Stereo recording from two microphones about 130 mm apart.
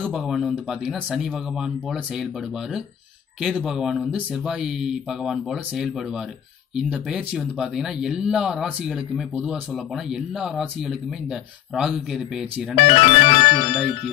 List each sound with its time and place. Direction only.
0.1 s speech: centre (ahead or behind)
3.3 s speech: 5° right (ahead or behind)
12.7 s music: 50° left (ahead or behind)